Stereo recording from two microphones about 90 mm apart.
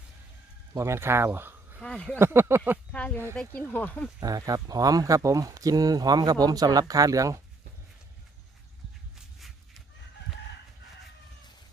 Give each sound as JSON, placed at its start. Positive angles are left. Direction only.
{"t": 0.7, "sound": "speech", "side_deg": -30}
{"t": 1.8, "sound": "speech", "side_deg": 10}
{"t": 2.1, "sound": "speech", "side_deg": -25}
{"t": 2.9, "sound": "speech", "side_deg": 15}
{"t": 4.2, "sound": "speech", "side_deg": -45}